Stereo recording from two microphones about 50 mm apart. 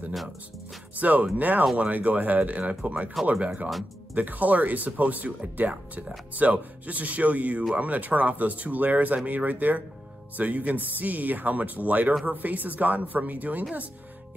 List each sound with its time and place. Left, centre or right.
0.9 s speech: right